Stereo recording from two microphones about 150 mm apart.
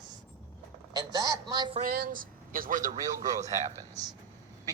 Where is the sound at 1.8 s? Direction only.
70° right (ahead or behind).